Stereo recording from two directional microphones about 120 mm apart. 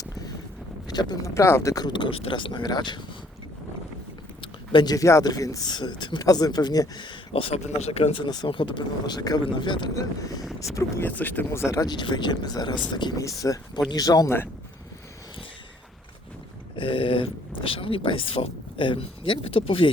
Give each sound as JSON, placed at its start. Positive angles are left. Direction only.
{"t": 0.9, "sound": "speech", "side_deg": 30}
{"t": 1.9, "sound": "speech", "side_deg": 45}
{"t": 4.7, "sound": "speech", "side_deg": 35}
{"t": 8.2, "sound": "speech", "side_deg": 35}
{"t": 9.9, "sound": "speech", "side_deg": 30}
{"t": 16.7, "sound": "speech", "side_deg": 45}